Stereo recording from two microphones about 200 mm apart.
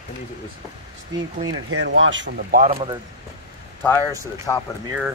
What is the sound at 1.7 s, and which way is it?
Speech, 70° right (ahead or behind).